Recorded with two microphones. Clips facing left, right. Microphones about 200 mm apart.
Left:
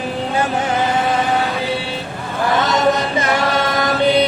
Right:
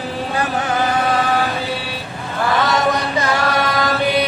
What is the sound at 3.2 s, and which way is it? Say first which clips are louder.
Music: even; 20° left (ahead or behind).